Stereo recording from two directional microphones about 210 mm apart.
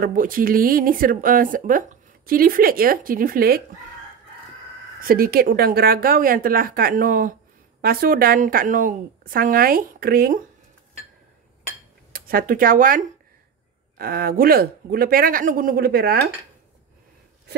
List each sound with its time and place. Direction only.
0.0 s speech: 40° right (ahead or behind)
5.0 s speech: 45° right (ahead or behind)
12.1 s speech: 45° right (ahead or behind)